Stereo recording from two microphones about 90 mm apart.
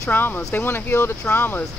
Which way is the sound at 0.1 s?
20° left (ahead or behind).